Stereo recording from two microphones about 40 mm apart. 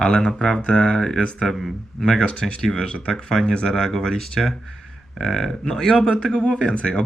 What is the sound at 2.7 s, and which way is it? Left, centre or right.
Speech, left.